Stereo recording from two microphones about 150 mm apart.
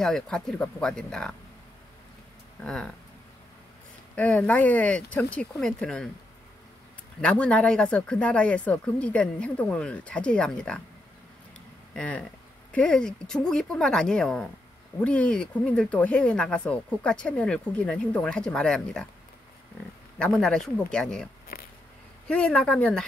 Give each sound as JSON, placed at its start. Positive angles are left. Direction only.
{"t": 0.0, "sound": "speech", "side_deg": 5}
{"t": 2.6, "sound": "speech", "side_deg": 5}
{"t": 4.1, "sound": "speech", "side_deg": 10}
{"t": 7.2, "sound": "speech", "side_deg": 5}
{"t": 11.9, "sound": "speech", "side_deg": 5}
{"t": 20.2, "sound": "speech", "side_deg": 5}
{"t": 21.5, "sound": "a sound", "side_deg": 90}
{"t": 22.3, "sound": "speech", "side_deg": 10}